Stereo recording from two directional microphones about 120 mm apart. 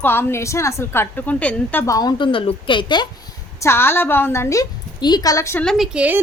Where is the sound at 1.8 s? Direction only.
30° left (ahead or behind).